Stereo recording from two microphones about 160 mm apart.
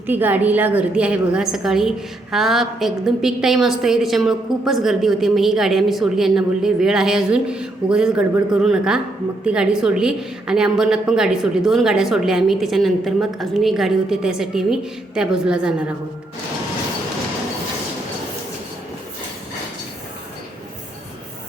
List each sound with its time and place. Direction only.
0.1 s a woman's voice: 10° right (ahead or behind)